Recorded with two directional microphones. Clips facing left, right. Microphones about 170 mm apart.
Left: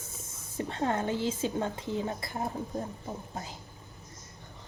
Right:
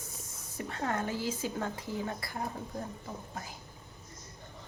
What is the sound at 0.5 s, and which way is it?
A woman's voice, 25° left (ahead or behind).